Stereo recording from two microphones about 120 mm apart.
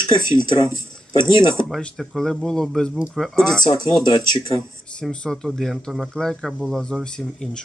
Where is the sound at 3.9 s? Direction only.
35° left (ahead or behind).